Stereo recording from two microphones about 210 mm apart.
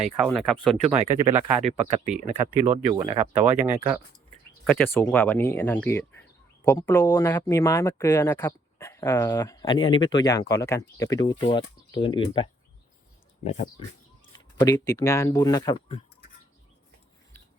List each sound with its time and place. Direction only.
0.2 s speech: centre (ahead or behind)
1.2 s speech: 30° right (ahead or behind)
4.6 s speech: 10° left (ahead or behind); by 13.8 s 30° left (ahead or behind)
14.3 s speech: 15° left (ahead or behind)